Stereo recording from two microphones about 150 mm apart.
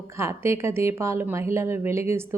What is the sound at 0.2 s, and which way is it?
A woman's voice, 20° right (ahead or behind).